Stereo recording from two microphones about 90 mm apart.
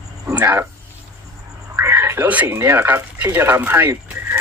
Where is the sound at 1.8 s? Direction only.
25° right (ahead or behind).